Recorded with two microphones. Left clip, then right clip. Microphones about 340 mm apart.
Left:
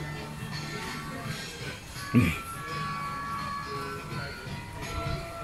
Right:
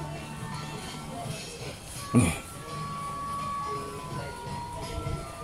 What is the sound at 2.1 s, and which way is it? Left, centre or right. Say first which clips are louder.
Music: even; right.